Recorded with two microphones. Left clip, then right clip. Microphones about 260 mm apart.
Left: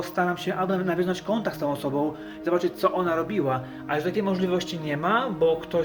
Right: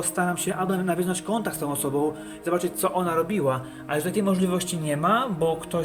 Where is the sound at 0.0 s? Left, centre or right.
Centre.